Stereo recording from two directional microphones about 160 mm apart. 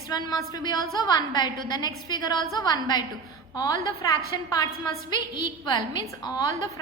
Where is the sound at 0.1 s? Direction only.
25° left (ahead or behind).